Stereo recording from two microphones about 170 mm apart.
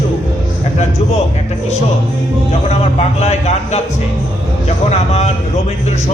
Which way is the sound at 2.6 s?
40° left (ahead or behind).